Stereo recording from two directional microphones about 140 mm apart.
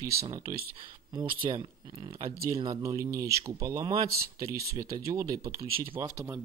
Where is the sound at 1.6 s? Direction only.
25° right (ahead or behind).